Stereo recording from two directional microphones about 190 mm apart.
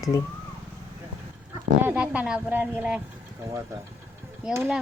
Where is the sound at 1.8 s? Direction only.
5° right (ahead or behind).